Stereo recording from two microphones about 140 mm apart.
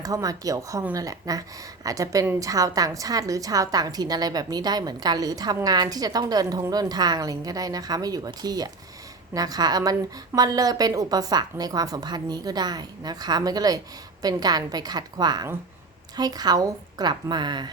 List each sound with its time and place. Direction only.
0.0 s a woman's voice: 25° right (ahead or behind)